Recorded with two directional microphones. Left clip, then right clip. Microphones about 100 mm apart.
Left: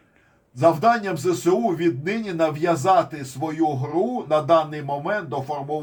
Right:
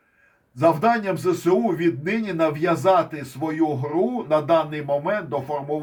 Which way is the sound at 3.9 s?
20° right (ahead or behind).